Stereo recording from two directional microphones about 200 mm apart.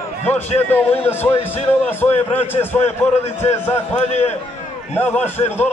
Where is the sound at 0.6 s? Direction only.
10° left (ahead or behind).